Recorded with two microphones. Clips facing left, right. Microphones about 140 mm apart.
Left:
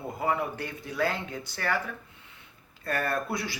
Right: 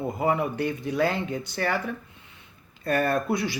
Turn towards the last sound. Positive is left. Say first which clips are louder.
# right 6 dB
turn(degrees=-20)  # may be behind; listen again after turning